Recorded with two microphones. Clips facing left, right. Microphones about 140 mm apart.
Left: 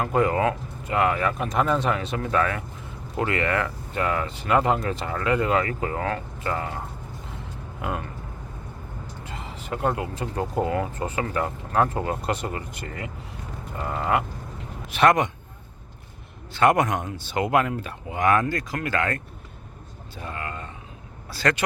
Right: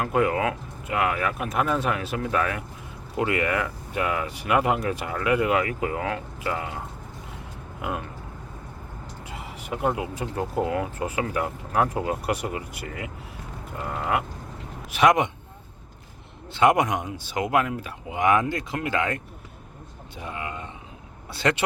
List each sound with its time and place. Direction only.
0.0 s speech: 5° right (ahead or behind)
7.8 s speech: 5° right (ahead or behind)
9.2 s speech: 10° right (ahead or behind)
14.9 s speech: 15° right (ahead or behind)
16.5 s speech: 20° right (ahead or behind)